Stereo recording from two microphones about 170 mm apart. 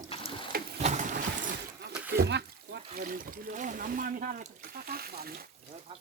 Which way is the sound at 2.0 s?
75° right (ahead or behind).